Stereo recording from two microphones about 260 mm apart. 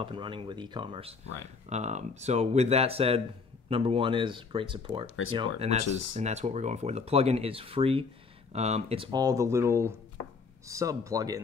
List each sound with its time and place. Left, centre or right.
0.0 s speech: centre
5.0 s speech: left
5.3 s speech: right
5.9 s speech: left
6.1 s speech: right